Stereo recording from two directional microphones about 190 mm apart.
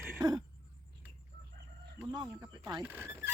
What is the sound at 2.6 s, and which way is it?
Speech, 20° right (ahead or behind).